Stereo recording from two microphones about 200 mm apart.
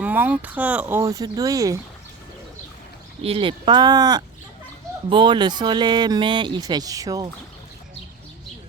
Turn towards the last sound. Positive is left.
turn(degrees=-15)  # may be behind; listen again after turning